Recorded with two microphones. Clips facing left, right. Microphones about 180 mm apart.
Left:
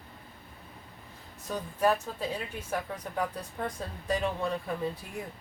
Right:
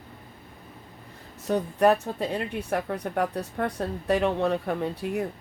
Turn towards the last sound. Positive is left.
turn(degrees=-70)  # may be behind; listen again after turning